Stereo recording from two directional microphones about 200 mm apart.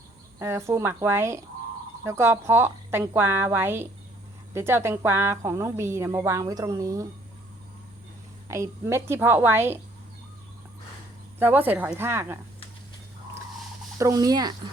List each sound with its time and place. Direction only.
0.3 s a woman's voice: 15° right (ahead or behind)
8.4 s a woman's voice: 15° right (ahead or behind)
11.3 s a woman's voice: 10° right (ahead or behind)
14.0 s a woman's voice: 15° right (ahead or behind)